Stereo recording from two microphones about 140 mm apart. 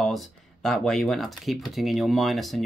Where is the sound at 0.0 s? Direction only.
Centre (ahead or behind).